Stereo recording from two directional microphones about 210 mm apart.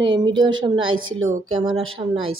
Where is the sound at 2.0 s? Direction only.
25° right (ahead or behind).